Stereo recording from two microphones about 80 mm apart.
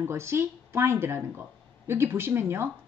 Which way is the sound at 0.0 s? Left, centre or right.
Right.